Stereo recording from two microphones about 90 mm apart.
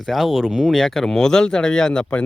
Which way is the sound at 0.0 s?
Centre (ahead or behind).